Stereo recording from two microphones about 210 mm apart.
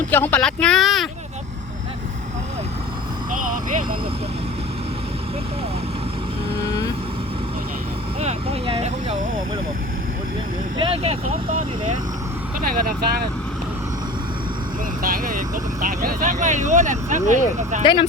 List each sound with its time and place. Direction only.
0.1 s speech: 10° left (ahead or behind)
3.4 s speech: 40° right (ahead or behind)
8.2 s speech: 30° right (ahead or behind)
10.8 s speech: 25° right (ahead or behind)
12.6 s speech: 45° right (ahead or behind)
15.0 s speech: 40° right (ahead or behind)